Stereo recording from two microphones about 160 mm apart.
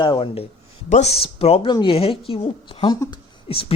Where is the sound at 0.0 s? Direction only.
30° left (ahead or behind).